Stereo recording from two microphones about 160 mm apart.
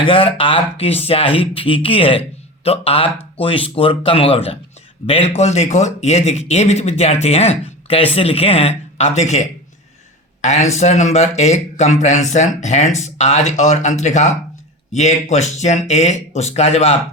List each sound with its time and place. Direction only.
0.0 s speech: 35° left (ahead or behind)